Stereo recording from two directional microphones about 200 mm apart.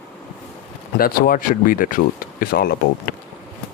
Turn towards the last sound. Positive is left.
turn(degrees=50)  # may be behind; listen again after turning